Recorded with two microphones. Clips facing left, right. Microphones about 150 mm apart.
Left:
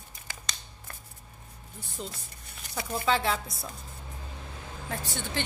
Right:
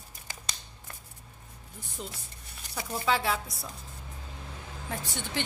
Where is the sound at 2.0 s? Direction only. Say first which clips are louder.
Left 2 dB; 5° right (ahead or behind).